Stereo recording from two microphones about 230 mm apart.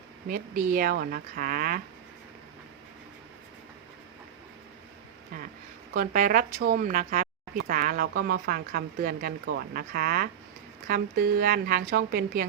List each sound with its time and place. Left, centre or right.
0.3 s speech: right
5.9 s speech: right